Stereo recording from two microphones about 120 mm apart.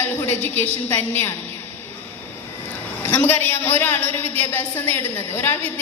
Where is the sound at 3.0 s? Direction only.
15° left (ahead or behind).